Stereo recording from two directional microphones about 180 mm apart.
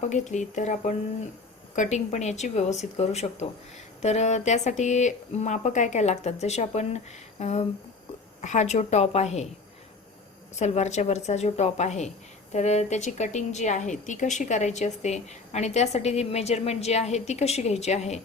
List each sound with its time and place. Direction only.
0.0 s a woman's voice: 40° left (ahead or behind)
10.6 s a woman's voice: 40° left (ahead or behind)